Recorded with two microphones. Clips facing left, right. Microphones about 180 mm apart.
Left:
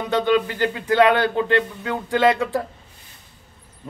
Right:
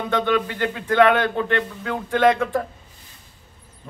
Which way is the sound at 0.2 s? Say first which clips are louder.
Left 2 dB; 15° left (ahead or behind).